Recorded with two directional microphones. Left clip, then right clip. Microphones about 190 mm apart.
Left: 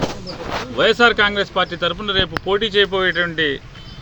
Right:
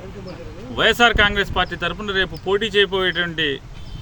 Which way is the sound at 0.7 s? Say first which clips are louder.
Left 1 dB; 15° right (ahead or behind).